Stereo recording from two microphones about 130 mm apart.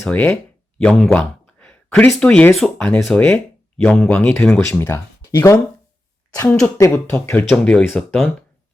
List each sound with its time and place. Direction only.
0.1 s speech: 10° left (ahead or behind)
0.8 s a sound: 5° left (ahead or behind)
2.1 s speech: 5° left (ahead or behind)
7.5 s speech: 10° left (ahead or behind)